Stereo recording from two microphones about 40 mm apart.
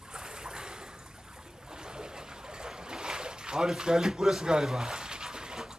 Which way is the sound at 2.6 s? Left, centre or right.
Centre.